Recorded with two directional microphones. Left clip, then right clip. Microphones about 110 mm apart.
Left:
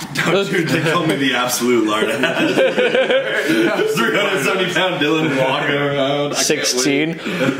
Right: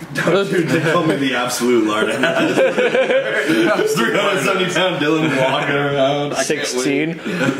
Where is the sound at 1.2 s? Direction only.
10° left (ahead or behind).